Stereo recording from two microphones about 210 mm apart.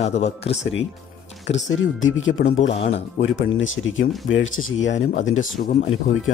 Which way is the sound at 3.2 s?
65° left (ahead or behind).